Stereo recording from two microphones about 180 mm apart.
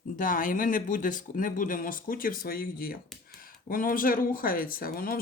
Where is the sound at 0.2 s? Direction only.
50° left (ahead or behind).